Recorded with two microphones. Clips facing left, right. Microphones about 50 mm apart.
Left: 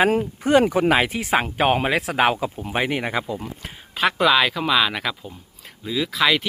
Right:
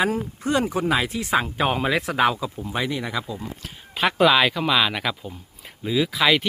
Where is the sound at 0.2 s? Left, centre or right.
Left.